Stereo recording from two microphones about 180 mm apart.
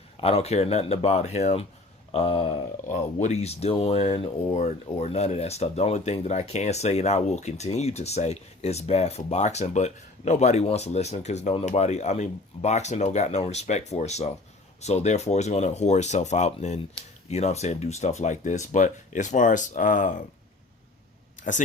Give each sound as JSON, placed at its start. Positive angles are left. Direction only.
{"t": 0.2, "sound": "speech", "side_deg": 35}
{"t": 2.9, "sound": "speech", "side_deg": 40}
{"t": 21.4, "sound": "a sound", "side_deg": 45}